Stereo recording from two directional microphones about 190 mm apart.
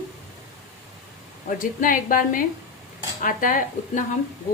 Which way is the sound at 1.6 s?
45° left (ahead or behind).